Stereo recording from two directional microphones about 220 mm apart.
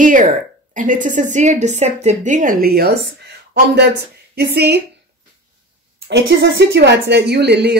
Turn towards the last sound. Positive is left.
turn(degrees=-50)  # may be behind; listen again after turning